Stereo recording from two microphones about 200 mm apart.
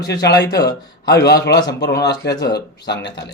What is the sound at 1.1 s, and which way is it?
Speech, 55° left (ahead or behind).